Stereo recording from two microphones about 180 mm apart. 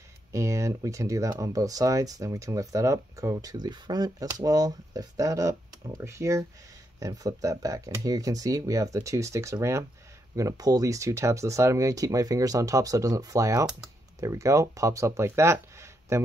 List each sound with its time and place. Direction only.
0.3 s speech: 15° right (ahead or behind)